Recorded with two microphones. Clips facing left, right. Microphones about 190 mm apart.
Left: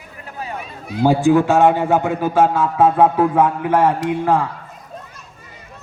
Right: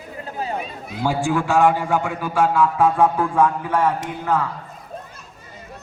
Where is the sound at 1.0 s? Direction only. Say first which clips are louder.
Left 7 dB; 20° left (ahead or behind).